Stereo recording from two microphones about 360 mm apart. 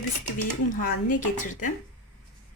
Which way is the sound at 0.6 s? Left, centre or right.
Left.